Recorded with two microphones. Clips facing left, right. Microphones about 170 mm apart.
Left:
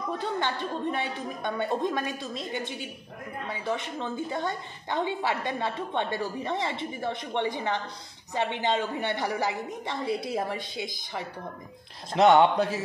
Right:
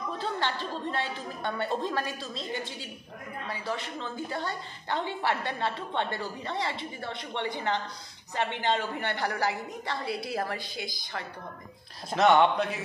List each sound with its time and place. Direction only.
0.2 s a woman's voice: 15° left (ahead or behind)
12.5 s speech: 35° left (ahead or behind)